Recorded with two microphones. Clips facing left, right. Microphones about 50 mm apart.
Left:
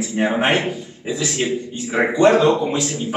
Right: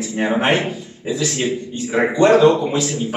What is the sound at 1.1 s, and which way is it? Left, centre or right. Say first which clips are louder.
Speech: right 1 dB; centre.